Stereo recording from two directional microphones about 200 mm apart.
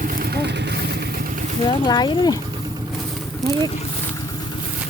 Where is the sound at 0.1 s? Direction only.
50° right (ahead or behind).